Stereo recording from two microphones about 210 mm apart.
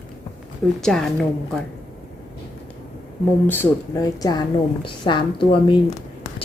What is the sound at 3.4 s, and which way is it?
A woman's voice, 15° left (ahead or behind).